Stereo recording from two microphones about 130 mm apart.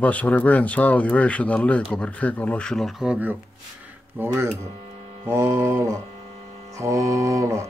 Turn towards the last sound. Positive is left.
turn(degrees=-25)  # may be behind; listen again after turning